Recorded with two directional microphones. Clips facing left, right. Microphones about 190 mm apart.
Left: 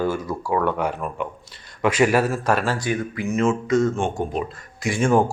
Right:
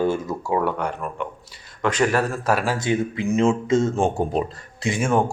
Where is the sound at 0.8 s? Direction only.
5° left (ahead or behind).